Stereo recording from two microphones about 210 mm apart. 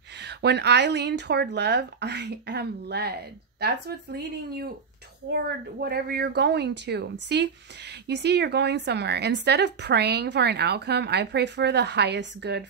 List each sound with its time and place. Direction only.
0.2 s a woman's voice: 55° right (ahead or behind)